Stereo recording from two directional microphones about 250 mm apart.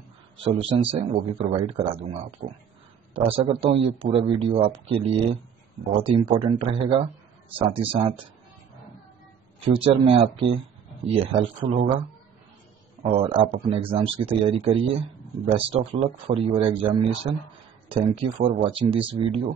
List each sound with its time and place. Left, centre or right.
0.4 s a man's voice: right
9.7 s a man's voice: right
13.0 s a man's voice: right